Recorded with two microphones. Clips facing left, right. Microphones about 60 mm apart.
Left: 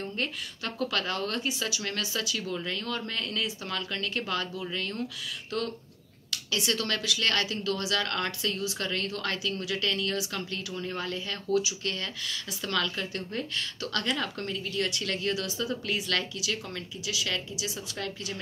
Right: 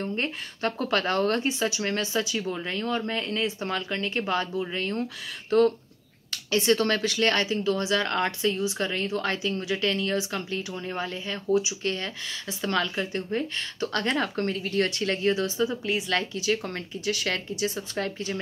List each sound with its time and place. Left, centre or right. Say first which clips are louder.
0.0 s speech: right 4 dB; right
16.3 s speech: right 6 dB; right